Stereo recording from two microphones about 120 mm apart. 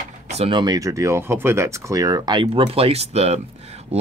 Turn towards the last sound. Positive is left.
turn(degrees=-60)  # may be behind; listen again after turning